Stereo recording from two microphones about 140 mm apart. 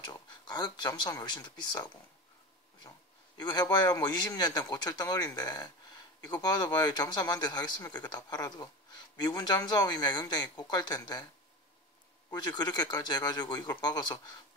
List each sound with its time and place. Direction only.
0.0 s speech: 30° left (ahead or behind)
3.3 s a man's voice: 30° left (ahead or behind)
12.3 s speech: 30° left (ahead or behind)